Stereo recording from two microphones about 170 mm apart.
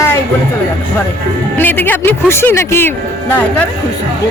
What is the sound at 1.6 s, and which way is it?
Speech, 10° left (ahead or behind).